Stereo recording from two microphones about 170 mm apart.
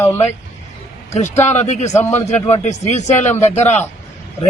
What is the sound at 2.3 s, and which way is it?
Speech, 40° left (ahead or behind).